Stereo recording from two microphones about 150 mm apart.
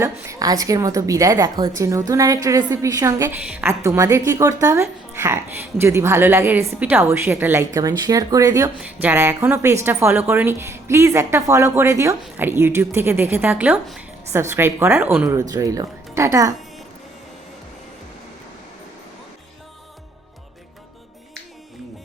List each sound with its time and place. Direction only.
0.0 s a woman's voice: 20° right (ahead or behind)
8.8 s a woman's voice: 10° right (ahead or behind)